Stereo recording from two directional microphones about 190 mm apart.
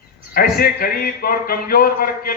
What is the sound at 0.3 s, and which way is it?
Speech, 50° left (ahead or behind).